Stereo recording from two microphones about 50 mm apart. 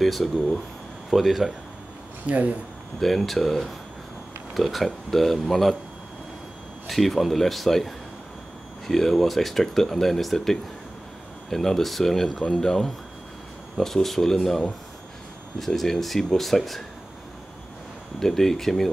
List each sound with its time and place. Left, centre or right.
0.0 s speech: centre
2.2 s speech: right
3.0 s speech: centre
6.9 s speech: centre
15.6 s speech: centre
18.2 s speech: centre